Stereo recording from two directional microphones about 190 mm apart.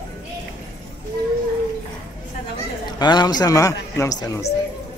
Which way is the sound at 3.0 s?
20° left (ahead or behind).